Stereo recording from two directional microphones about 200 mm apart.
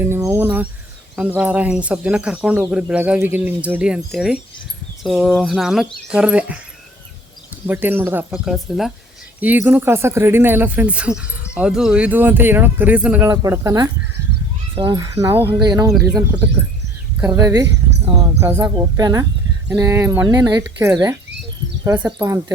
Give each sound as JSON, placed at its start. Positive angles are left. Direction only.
{"t": 0.0, "sound": "cricket", "side_deg": -10}
{"t": 1.4, "sound": "speech", "side_deg": -5}
{"t": 7.7, "sound": "speech", "side_deg": -10}
{"t": 15.9, "sound": "speech", "side_deg": 0}
{"t": 17.2, "sound": "speech", "side_deg": -20}